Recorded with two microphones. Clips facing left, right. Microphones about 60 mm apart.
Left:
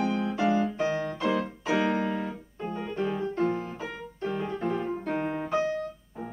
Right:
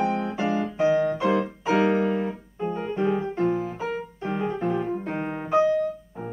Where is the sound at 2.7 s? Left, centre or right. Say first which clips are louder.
Right 5 dB; centre.